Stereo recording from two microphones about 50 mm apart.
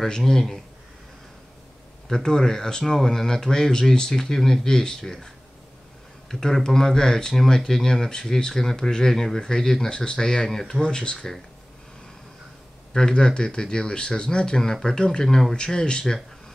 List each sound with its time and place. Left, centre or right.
0.0 s speech: centre
2.0 s speech: centre
6.4 s speech: centre
12.9 s speech: centre